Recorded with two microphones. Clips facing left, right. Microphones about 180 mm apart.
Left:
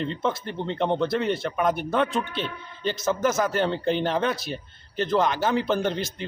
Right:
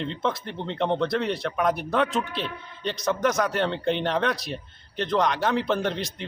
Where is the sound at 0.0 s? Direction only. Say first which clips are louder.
Left 1 dB; centre (ahead or behind).